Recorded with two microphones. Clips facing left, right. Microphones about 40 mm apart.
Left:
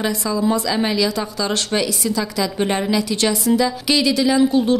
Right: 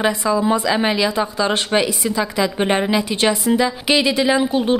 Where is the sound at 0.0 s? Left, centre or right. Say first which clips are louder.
Right 3 dB; right.